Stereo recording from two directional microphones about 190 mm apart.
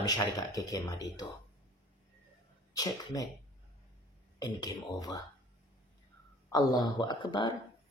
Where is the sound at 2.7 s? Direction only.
20° left (ahead or behind).